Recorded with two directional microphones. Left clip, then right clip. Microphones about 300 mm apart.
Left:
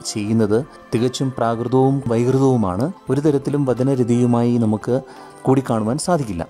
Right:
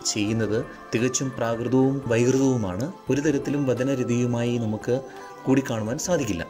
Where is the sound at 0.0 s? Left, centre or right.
Centre.